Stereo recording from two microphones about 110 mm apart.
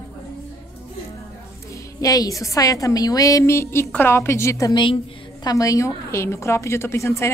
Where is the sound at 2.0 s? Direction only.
30° left (ahead or behind).